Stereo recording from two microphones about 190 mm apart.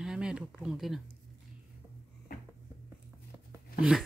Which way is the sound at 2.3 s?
50° left (ahead or behind).